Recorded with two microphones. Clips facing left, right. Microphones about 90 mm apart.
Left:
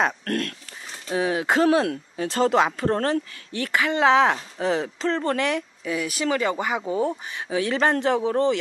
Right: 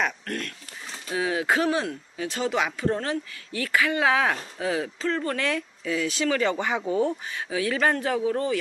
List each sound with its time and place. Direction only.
0.2 s speech: 50° left (ahead or behind)
1.1 s speech: 30° left (ahead or behind)
3.5 s speech: 25° left (ahead or behind)
5.4 s speech: 15° left (ahead or behind)